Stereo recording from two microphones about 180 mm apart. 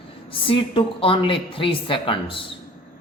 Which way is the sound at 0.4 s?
30° left (ahead or behind).